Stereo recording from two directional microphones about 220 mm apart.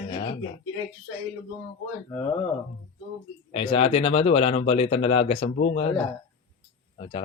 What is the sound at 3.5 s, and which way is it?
Speech, 25° left (ahead or behind).